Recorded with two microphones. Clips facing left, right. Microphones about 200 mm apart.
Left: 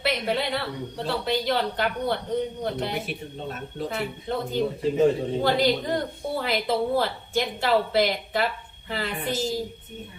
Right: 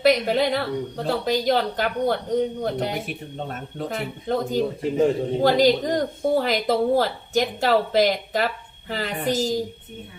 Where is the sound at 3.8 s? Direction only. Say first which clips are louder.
Right 3 dB; 40° right (ahead or behind).